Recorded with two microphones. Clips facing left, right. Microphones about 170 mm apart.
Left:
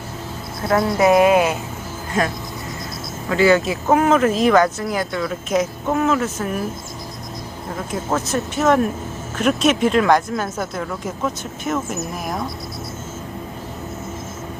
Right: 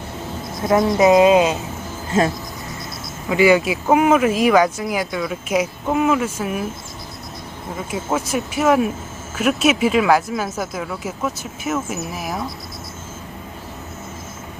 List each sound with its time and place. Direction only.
0.7 s speech: 20° right (ahead or behind)
3.2 s speech: 15° right (ahead or behind)
7.8 s speech: 10° right (ahead or behind)